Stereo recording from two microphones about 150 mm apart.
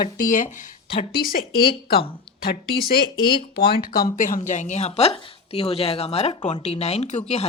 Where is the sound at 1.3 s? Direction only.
80° left.